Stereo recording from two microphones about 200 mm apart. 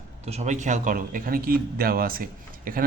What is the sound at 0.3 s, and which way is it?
Speech, 35° right (ahead or behind).